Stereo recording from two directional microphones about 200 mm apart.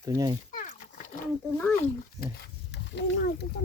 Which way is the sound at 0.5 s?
40° left (ahead or behind).